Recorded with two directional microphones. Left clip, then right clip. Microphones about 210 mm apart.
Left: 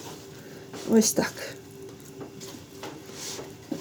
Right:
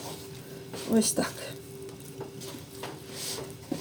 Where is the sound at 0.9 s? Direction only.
40° left (ahead or behind).